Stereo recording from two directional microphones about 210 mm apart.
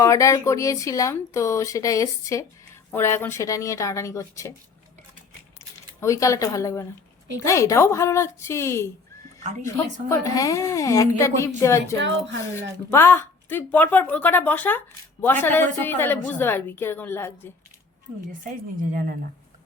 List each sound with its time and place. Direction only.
0.0 s speech: 15° left (ahead or behind)
6.0 s speech: 15° left (ahead or behind)
11.9 s a woman's voice: 60° right (ahead or behind)
12.5 s speech: 10° left (ahead or behind)
18.8 s speech: 40° right (ahead or behind)